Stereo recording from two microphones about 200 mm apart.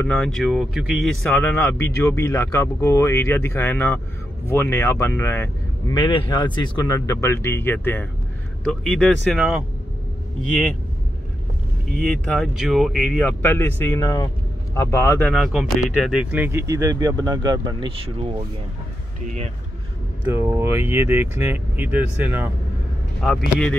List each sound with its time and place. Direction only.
0.0 s speech: 5° left (ahead or behind)
12.0 s speech: centre (ahead or behind)
15.3 s speech: 5° right (ahead or behind); by 19.5 s 35° right (ahead or behind)
20.3 s speech: 10° right (ahead or behind)